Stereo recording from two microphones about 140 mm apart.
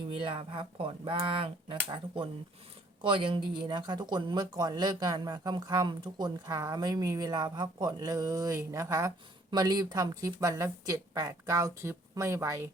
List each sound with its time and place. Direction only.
0.1 s speech: 40° right (ahead or behind); by 12.6 s 20° right (ahead or behind)